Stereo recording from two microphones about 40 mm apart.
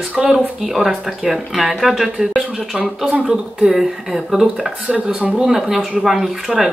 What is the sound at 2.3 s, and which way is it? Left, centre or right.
Speech, centre.